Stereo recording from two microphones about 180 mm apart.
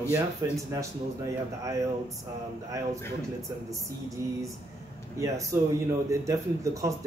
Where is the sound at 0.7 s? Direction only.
15° right (ahead or behind).